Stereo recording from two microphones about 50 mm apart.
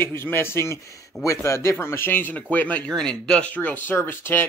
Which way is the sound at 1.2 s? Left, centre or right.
Left.